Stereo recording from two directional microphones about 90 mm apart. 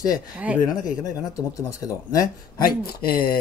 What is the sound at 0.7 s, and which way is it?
Speech, 45° left (ahead or behind).